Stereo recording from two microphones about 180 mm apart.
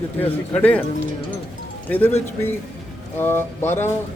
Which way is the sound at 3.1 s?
10° left (ahead or behind).